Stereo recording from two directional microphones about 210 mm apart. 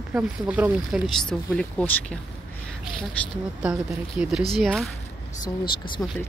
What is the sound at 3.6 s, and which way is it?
Speech, centre (ahead or behind).